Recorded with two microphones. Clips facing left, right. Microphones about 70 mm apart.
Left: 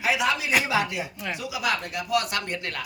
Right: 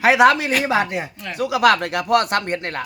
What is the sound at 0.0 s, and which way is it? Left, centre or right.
Speech, right.